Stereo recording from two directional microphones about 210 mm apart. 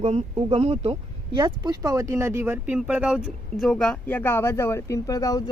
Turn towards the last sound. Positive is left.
turn(degrees=15)  # may be behind; listen again after turning